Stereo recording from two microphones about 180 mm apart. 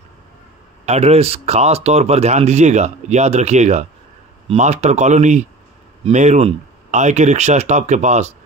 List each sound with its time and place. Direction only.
0.8 s speech: 35° right (ahead or behind)